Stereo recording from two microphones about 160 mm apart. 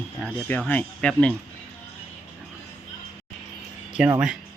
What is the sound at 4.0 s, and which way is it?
Speech, 5° right (ahead or behind).